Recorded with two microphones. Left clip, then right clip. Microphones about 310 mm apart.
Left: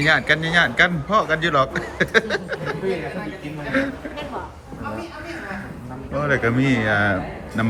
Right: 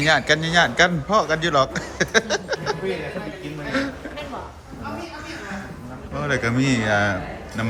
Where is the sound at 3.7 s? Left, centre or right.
Centre.